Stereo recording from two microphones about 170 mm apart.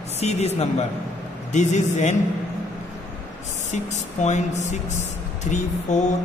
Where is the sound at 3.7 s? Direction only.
45° left (ahead or behind).